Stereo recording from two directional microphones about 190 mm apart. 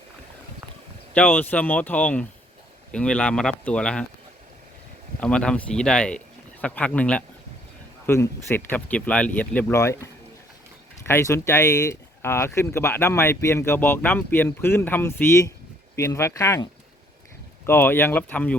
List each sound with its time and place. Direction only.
1.1 s speech: 10° left (ahead or behind)
5.2 s speech: 5° left (ahead or behind)
11.0 s speech: 15° left (ahead or behind)
17.7 s speech: 10° left (ahead or behind)